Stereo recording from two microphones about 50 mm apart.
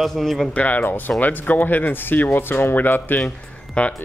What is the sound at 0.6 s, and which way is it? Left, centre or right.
Speech, left.